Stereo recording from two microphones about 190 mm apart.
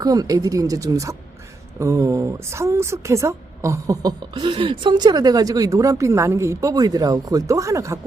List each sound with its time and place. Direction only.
0.0 s a woman's voice: 20° right (ahead or behind)